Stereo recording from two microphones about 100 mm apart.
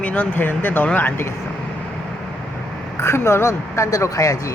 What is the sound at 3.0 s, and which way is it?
Speech, 30° left (ahead or behind).